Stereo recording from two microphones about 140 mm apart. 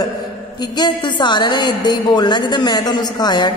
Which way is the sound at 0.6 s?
30° left (ahead or behind).